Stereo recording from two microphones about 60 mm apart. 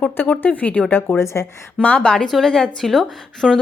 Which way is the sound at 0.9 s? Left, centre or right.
Left.